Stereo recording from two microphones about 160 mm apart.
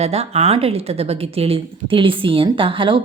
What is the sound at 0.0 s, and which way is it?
Speech, 40° right (ahead or behind).